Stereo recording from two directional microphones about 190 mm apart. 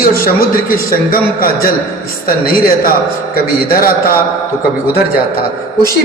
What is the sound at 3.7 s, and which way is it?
Speech, 50° left (ahead or behind).